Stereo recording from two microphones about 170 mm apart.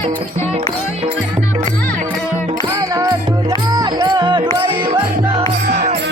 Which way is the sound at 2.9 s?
20° right (ahead or behind).